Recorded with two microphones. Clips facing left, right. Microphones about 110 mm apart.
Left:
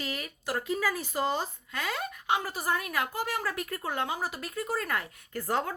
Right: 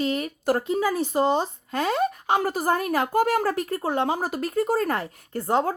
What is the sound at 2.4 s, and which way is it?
A woman's voice, 45° right (ahead or behind).